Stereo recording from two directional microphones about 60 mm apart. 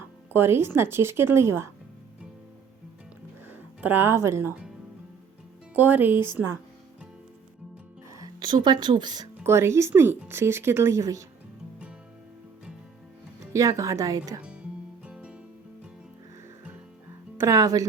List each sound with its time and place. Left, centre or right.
0.3 s a woman's voice: right
3.8 s a woman's voice: right
4.1 s a woman's voice: right
5.7 s speech: right
8.1 s music: right
9.4 s a woman's voice: right
11.0 s speech: right
13.5 s speech: right
15.0 s music: centre
17.4 s speech: right